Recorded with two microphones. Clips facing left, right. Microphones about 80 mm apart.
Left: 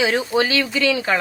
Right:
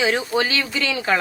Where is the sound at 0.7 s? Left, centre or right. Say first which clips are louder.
Left 3 dB; right.